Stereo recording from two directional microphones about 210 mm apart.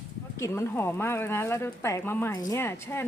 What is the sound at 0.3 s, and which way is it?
Speech, 15° left (ahead or behind).